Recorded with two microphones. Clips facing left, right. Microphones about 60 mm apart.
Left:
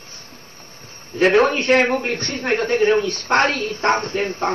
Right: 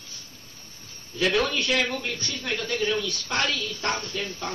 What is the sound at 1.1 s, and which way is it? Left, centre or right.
Speech, left.